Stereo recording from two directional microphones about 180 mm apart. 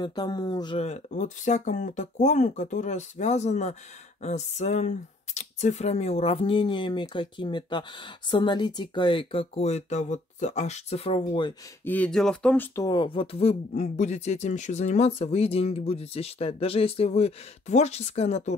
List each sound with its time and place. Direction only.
0.0 s speech: 25° left (ahead or behind)
0.8 s speech: 40° left (ahead or behind)
11.8 s speech: 10° left (ahead or behind)
12.7 s speech: 20° left (ahead or behind)